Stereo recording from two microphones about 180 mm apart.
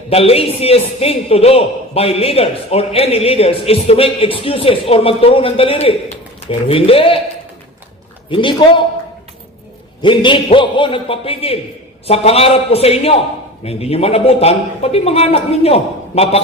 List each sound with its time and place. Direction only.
0.1 s a man's voice: 35° left (ahead or behind)
8.3 s a man's voice: 30° left (ahead or behind)
10.0 s a man's voice: 25° left (ahead or behind)